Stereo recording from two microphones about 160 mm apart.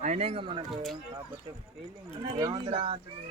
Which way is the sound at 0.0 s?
40° right (ahead or behind).